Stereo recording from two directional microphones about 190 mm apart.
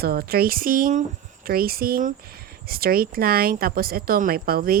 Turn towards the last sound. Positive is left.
turn(degrees=-50)  # may be behind; listen again after turning